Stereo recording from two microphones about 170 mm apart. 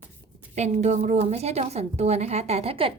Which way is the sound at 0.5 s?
40° right (ahead or behind).